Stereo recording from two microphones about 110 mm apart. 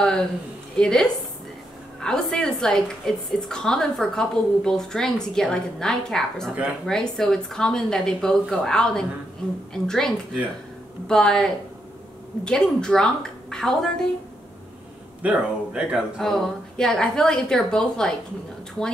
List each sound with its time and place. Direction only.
0.0 s a sound: 5° left (ahead or behind)
0.7 s a woman's voice: 5° left (ahead or behind)
15.2 s speech: 10° right (ahead or behind)
16.2 s a woman's voice: 5° left (ahead or behind)